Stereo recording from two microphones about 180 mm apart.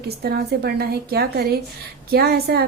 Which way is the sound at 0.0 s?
60° right (ahead or behind).